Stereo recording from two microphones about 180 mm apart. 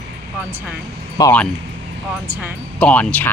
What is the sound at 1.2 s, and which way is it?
Speech, 20° left (ahead or behind).